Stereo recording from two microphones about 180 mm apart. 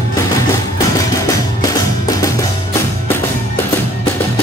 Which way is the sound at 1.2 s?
20° left (ahead or behind).